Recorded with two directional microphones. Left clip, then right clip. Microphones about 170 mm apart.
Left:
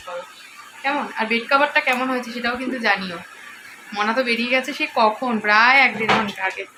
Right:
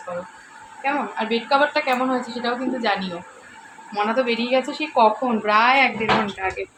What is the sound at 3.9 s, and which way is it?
A woman's voice, 5° right (ahead or behind).